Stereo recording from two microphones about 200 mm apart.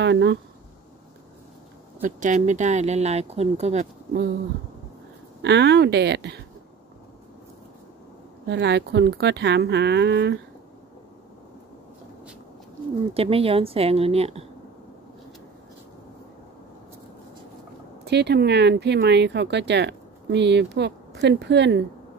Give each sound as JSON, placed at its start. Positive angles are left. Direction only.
{"t": 0.0, "sound": "speech", "side_deg": -60}
{"t": 2.0, "sound": "speech", "side_deg": -40}
{"t": 5.4, "sound": "speech", "side_deg": -60}
{"t": 8.5, "sound": "speech", "side_deg": -60}
{"t": 13.1, "sound": "speech", "side_deg": -30}
{"t": 18.0, "sound": "speech", "side_deg": -55}